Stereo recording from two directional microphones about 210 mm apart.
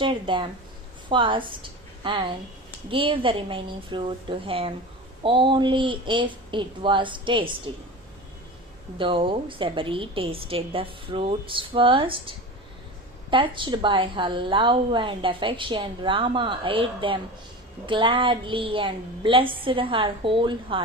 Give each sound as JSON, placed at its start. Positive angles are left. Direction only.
{"t": 0.0, "sound": "a woman's voice", "side_deg": -25}
{"t": 9.0, "sound": "a woman's voice", "side_deg": -25}
{"t": 13.3, "sound": "a woman's voice", "side_deg": -25}